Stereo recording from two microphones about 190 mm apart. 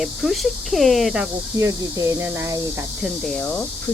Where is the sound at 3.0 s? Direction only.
5° left (ahead or behind).